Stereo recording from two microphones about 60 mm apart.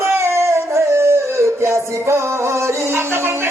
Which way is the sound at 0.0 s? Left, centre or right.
Right.